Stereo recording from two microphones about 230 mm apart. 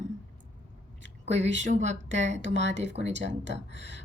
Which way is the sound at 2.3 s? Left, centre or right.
Right.